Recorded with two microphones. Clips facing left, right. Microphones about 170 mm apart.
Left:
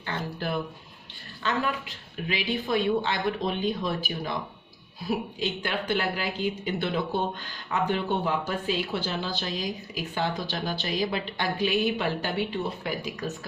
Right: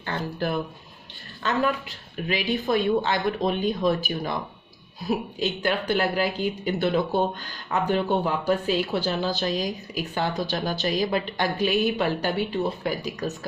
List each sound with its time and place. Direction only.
0.0 s speech: 45° right (ahead or behind)